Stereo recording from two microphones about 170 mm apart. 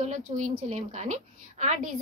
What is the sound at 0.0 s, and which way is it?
A woman's voice, 45° right (ahead or behind).